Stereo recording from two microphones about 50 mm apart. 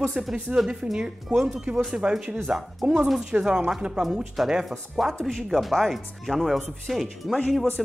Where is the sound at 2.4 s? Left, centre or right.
Centre.